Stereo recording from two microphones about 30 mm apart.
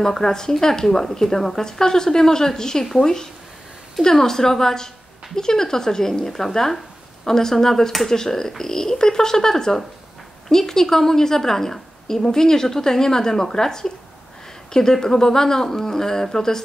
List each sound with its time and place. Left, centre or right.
0.0 s a woman's voice: centre